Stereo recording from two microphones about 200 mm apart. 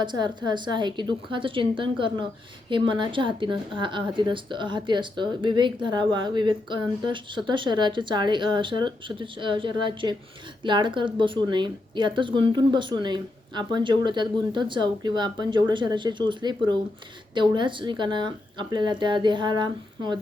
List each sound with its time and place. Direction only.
0.0 s a woman's voice: 20° right (ahead or behind)